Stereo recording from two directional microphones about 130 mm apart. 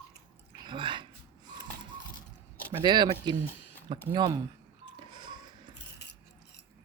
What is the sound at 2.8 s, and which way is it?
Speech, 35° right (ahead or behind).